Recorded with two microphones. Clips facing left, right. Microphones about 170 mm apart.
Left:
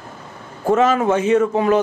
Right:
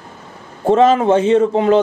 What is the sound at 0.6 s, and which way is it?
A man's voice, 30° right (ahead or behind).